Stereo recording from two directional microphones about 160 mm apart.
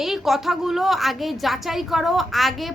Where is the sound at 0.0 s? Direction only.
Centre (ahead or behind).